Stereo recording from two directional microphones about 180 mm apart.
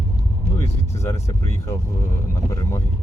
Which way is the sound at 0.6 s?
15° left (ahead or behind).